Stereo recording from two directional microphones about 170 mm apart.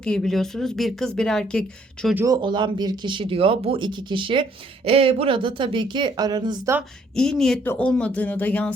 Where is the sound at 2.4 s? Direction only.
30° right (ahead or behind).